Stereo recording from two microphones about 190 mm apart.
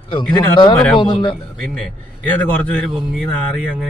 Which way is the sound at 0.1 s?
25° left (ahead or behind).